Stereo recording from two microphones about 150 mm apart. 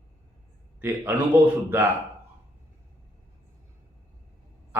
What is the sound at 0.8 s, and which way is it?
Speech, 15° right (ahead or behind).